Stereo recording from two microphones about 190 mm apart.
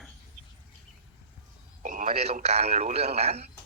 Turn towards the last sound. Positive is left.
turn(degrees=-35)  # may be behind; listen again after turning